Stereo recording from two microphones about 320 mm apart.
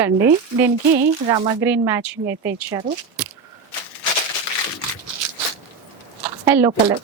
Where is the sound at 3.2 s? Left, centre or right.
Centre.